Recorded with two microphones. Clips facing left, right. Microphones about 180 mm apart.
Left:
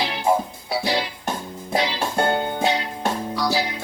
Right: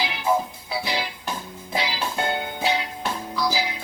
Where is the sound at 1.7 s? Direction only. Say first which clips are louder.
Left 4 dB; 45° left (ahead or behind).